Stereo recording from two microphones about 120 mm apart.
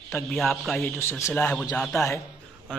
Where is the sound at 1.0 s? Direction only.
20° left (ahead or behind).